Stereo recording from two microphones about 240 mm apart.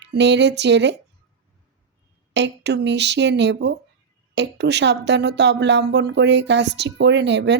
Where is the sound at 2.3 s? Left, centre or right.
Right.